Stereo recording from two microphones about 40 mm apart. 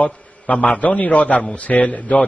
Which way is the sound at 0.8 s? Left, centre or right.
Left.